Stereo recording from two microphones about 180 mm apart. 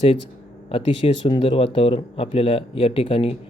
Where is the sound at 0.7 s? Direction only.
30° left (ahead or behind).